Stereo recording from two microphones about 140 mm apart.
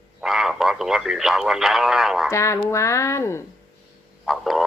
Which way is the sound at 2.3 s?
20° left (ahead or behind).